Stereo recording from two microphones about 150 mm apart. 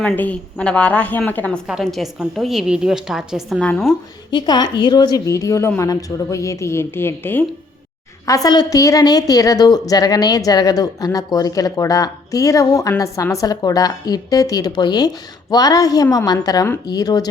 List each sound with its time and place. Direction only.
0.0 s a woman's voice: 10° left (ahead or behind)
1.6 s a woman's voice: centre (ahead or behind)
4.3 s a woman's voice: 30° left (ahead or behind)